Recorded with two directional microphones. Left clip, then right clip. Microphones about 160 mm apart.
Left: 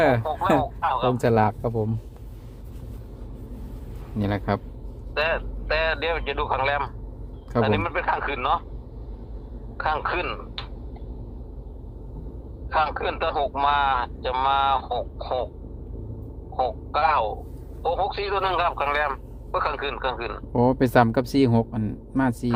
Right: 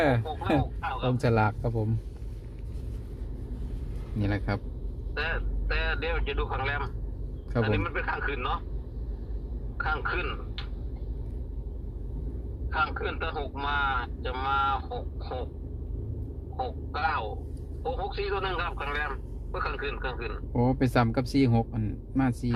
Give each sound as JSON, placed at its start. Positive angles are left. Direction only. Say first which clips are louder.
{"t": 0.3, "sound": "a man's voice", "louder": "left 7 dB", "side_deg": 30}
{"t": 4.2, "sound": "speech", "louder": "left 6 dB", "side_deg": 50}
{"t": 5.1, "sound": "speech", "louder": "left 8 dB", "side_deg": 25}
{"t": 9.7, "sound": "a man's voice", "louder": "left 5 dB", "side_deg": 25}
{"t": 12.7, "sound": "speech", "louder": "left 6 dB", "side_deg": 25}
{"t": 16.6, "sound": "speech", "louder": "left 9 dB", "side_deg": 25}
{"t": 20.5, "sound": "speech", "louder": "left 7 dB", "side_deg": 45}